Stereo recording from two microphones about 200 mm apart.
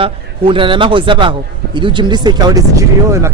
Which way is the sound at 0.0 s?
25° right (ahead or behind).